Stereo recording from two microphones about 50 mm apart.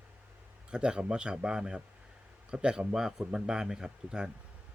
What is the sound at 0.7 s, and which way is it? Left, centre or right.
Speech, centre.